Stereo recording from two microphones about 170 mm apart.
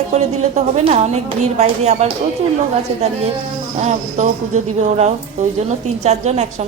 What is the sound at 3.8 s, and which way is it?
A woman's voice, 45° right (ahead or behind).